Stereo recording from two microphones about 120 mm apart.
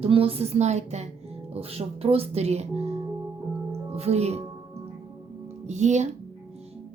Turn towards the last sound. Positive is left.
turn(degrees=-75)  # may be behind; listen again after turning